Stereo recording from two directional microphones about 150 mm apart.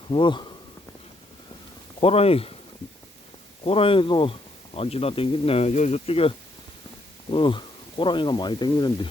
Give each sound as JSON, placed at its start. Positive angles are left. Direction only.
{"t": 0.1, "sound": "speech", "side_deg": 30}
{"t": 2.0, "sound": "speech", "side_deg": 40}
{"t": 3.6, "sound": "speech", "side_deg": 40}